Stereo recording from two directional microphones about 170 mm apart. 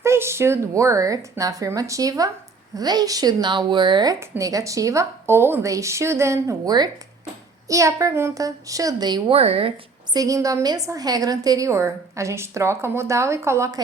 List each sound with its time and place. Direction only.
0.0 s a woman's voice: 15° right (ahead or behind)
9.4 s a woman's voice: 35° right (ahead or behind)
10.2 s a woman's voice: 20° right (ahead or behind)